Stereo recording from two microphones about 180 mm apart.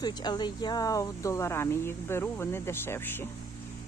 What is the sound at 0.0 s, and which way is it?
Speech, 25° left (ahead or behind).